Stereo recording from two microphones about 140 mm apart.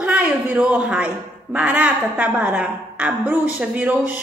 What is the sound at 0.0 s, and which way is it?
A man's voice, 10° right (ahead or behind).